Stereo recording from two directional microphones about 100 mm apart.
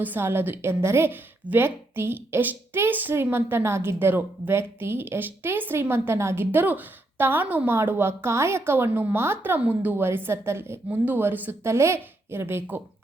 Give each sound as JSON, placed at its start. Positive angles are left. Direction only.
{"t": 0.0, "sound": "a woman's voice", "side_deg": -20}